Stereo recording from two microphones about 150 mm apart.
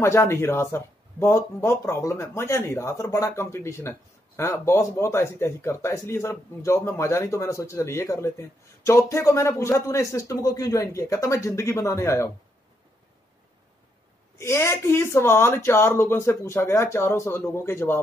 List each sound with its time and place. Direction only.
0.0 s speech: 15° left (ahead or behind)
14.4 s speech: 15° left (ahead or behind)